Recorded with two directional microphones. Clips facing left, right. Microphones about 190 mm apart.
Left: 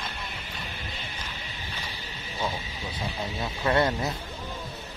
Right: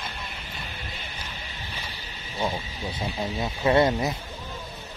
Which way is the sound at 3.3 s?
20° right (ahead or behind).